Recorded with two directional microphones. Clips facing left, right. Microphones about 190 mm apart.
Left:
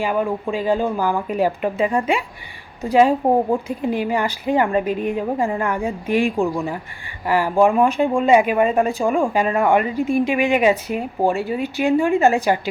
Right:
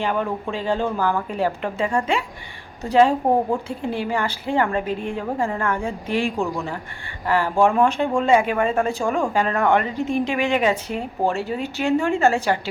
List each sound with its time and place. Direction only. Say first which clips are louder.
0.0 s speech: left 3 dB; 10° left (ahead or behind)